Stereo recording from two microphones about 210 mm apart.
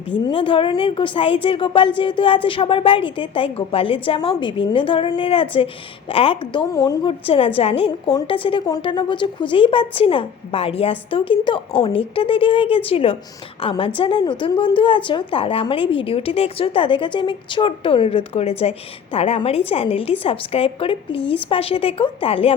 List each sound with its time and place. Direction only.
0.1 s a woman's voice: 25° left (ahead or behind)